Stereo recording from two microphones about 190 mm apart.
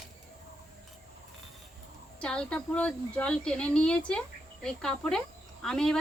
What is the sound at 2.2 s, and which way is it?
Speech, 5° left (ahead or behind).